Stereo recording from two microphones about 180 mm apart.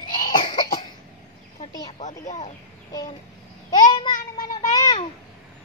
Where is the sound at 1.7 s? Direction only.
20° left (ahead or behind).